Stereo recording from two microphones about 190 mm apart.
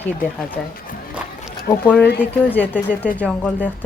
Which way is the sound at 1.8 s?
10° left (ahead or behind).